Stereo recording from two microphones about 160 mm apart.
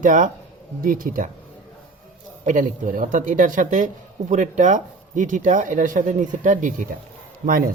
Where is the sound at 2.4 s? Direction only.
55° right (ahead or behind).